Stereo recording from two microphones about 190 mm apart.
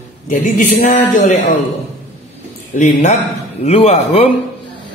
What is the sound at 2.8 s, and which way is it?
A man's voice, 40° left (ahead or behind).